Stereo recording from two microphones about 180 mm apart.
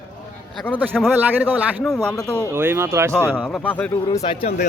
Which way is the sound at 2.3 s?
15° right (ahead or behind).